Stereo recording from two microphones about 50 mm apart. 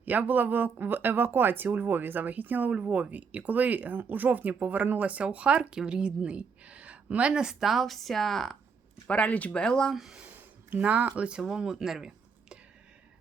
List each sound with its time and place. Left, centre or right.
0.0 s speech: right
7.6 s speech: centre
9.0 s speech: left
9.9 s speech: centre
10.7 s speech: right; by 12.5 s centre